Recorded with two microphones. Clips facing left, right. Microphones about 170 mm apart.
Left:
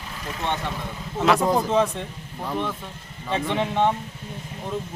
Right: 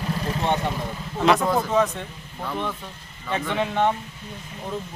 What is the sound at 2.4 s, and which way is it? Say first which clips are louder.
Speech: left 1 dB; 15° left (ahead or behind).